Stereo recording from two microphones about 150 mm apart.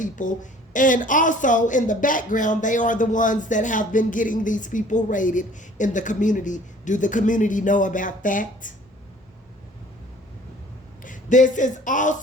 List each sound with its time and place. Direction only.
0.0 s a woman's voice: 60° left (ahead or behind)
11.0 s speech: 60° left (ahead or behind)